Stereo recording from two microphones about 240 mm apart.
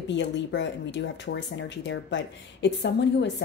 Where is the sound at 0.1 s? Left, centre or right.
Left.